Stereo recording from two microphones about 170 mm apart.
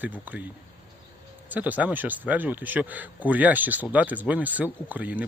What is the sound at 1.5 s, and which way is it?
Speech, 10° right (ahead or behind).